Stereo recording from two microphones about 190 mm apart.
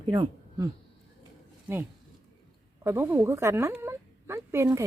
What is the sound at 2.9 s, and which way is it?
A woman's voice, 10° right (ahead or behind).